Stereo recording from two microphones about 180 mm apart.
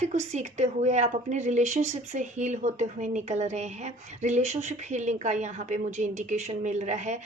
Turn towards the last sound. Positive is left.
turn(degrees=-40)  # may be behind; listen again after turning